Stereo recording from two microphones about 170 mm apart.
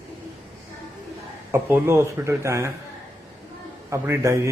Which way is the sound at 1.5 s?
15° right (ahead or behind).